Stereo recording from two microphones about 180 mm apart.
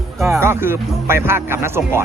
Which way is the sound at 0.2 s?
15° right (ahead or behind).